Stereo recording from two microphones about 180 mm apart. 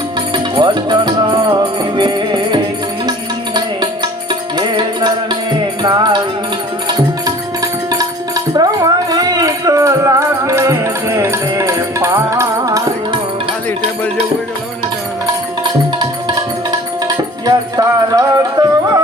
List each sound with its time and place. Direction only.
0.5 s music: 25° right (ahead or behind)
17.4 s music: 20° right (ahead or behind)